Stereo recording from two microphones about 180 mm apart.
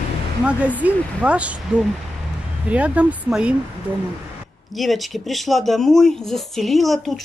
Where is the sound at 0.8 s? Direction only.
5° right (ahead or behind).